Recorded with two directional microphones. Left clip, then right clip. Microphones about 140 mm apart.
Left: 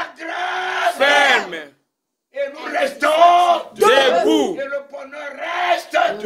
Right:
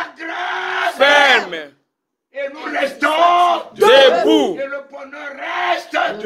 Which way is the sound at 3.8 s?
15° left (ahead or behind).